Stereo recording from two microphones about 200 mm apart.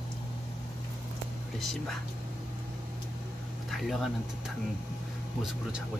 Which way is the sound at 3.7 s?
Centre (ahead or behind).